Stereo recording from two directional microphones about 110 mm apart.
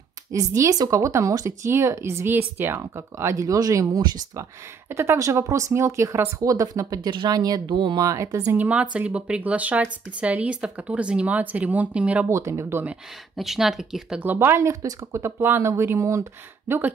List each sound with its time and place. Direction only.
0.3 s speech: 30° right (ahead or behind)
7.0 s speech: 45° right (ahead or behind)
8.1 s speech: 30° right (ahead or behind)
8.5 s speech: 10° right (ahead or behind)
12.3 s speech: 25° right (ahead or behind)
13.4 s speech: 5° right (ahead or behind)
14.2 s speech: 20° right (ahead or behind)